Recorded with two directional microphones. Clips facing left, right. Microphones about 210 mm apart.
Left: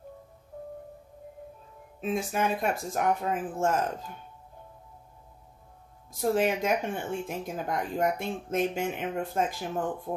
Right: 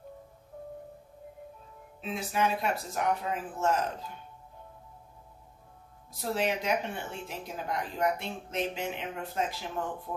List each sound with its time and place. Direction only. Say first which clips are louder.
2.0 s speech: left 2 dB; 50° left (ahead or behind)
6.3 s speech: left 2 dB; 50° left (ahead or behind)